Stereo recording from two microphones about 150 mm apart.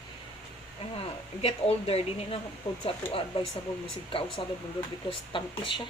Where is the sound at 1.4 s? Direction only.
40° left (ahead or behind).